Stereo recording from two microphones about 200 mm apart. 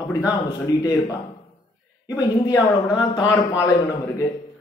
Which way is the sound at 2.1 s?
20° left (ahead or behind).